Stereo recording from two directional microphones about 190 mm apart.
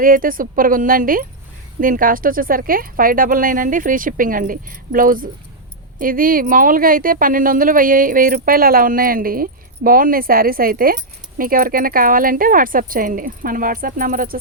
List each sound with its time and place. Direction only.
0.0 s speech: 45° right (ahead or behind)